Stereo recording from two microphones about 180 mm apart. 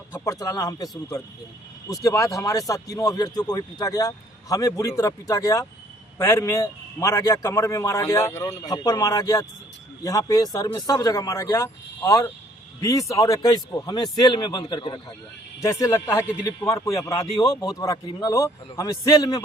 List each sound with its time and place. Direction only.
0.1 s a man's voice: 20° left (ahead or behind)